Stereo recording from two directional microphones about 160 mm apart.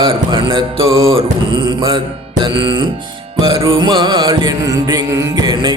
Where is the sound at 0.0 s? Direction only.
30° right (ahead or behind).